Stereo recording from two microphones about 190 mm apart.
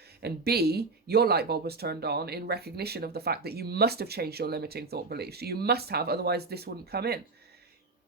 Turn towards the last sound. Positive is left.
turn(degrees=-55)  # may be behind; listen again after turning